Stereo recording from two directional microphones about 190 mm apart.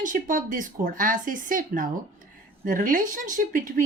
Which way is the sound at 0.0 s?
45° right (ahead or behind).